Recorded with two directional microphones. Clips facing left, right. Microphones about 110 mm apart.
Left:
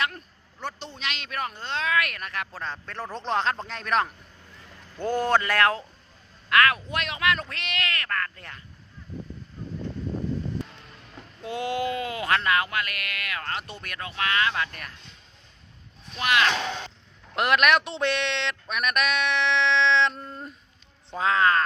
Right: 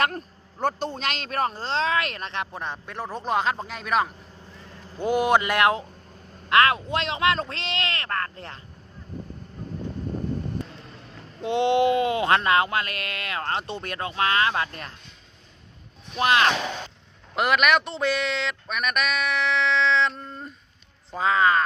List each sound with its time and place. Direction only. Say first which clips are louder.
0.6 s speech: right 8 dB; 45° right (ahead or behind); by 8.6 s 30° right (ahead or behind)
11.4 s speech: right 8 dB; 25° right (ahead or behind)
16.1 s speech: right 3 dB; 30° right (ahead or behind)
17.3 s speech: even; centre (ahead or behind)